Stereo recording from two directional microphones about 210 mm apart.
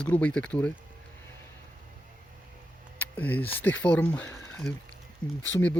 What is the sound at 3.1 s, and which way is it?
Speech, 5° left (ahead or behind).